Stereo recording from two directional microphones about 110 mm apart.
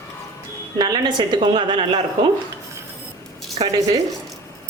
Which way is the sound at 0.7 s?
40° right (ahead or behind).